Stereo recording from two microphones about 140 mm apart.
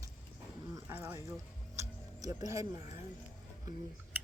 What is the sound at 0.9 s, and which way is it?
Speech, 20° right (ahead or behind).